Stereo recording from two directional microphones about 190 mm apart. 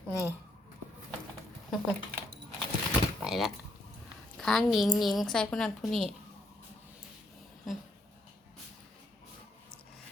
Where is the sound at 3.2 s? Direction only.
Centre (ahead or behind).